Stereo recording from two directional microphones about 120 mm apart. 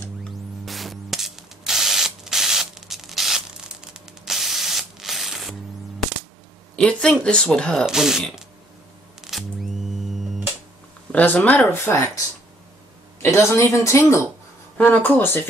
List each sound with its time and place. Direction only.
0.7 s ratchet: centre (ahead or behind)
6.8 s speech: 5° left (ahead or behind)
9.2 s camera: centre (ahead or behind)
11.1 s speech: 15° left (ahead or behind)
13.2 s a woman's voice: 20° left (ahead or behind)